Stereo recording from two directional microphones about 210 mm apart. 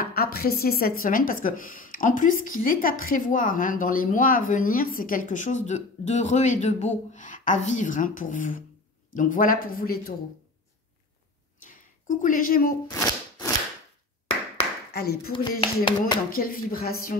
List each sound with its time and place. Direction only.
0.0 s speech: 45° left (ahead or behind)
11.6 s speech: 40° left (ahead or behind)
12.8 s a sound: 15° left (ahead or behind)
14.9 s speech: 50° left (ahead or behind)
15.3 s speech: 25° left (ahead or behind)
16.3 s speech: 45° left (ahead or behind)